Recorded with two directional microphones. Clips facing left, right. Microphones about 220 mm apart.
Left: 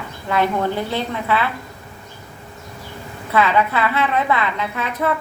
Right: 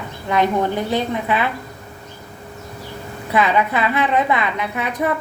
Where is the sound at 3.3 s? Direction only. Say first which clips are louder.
Even; 15° right (ahead or behind).